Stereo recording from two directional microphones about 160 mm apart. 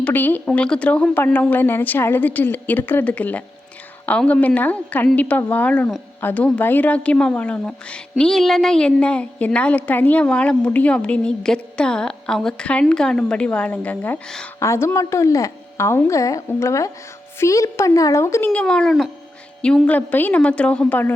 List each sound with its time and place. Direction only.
0.0 s a woman's voice: 10° left (ahead or behind)
14.6 s a woman's voice: 15° left (ahead or behind)